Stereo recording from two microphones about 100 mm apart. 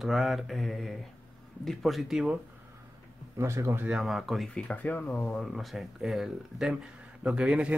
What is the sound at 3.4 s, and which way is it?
Speech, 30° right (ahead or behind).